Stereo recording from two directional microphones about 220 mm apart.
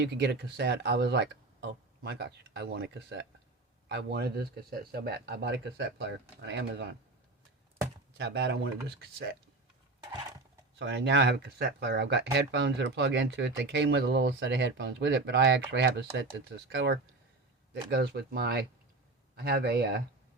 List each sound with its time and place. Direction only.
0.0 s speech: 50° right (ahead or behind)
8.2 s speech: 50° right (ahead or behind)
10.8 s speech: 55° right (ahead or behind)